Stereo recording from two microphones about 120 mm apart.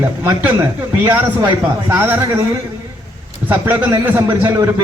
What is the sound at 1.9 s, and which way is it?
Speech, 20° right (ahead or behind).